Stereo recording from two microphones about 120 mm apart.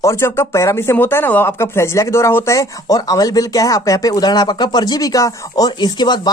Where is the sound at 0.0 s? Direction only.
20° left (ahead or behind).